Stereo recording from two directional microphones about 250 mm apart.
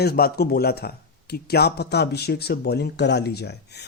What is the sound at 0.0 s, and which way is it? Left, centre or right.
A man's voice, left.